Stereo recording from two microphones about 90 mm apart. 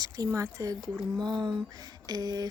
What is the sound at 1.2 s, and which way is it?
A woman's voice, 55° right (ahead or behind).